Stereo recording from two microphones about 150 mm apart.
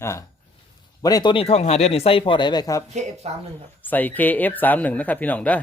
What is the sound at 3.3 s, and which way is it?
Speech, 45° right (ahead or behind).